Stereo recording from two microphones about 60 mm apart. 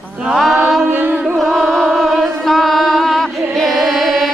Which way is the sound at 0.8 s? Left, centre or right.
Right.